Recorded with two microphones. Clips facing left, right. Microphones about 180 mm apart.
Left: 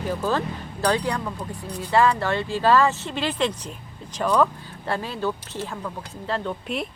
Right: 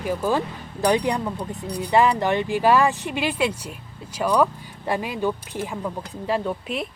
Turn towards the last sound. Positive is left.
turn(degrees=0)  # may be behind; listen again after turning